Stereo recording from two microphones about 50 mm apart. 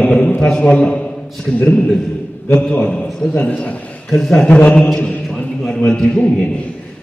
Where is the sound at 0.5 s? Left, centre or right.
Centre.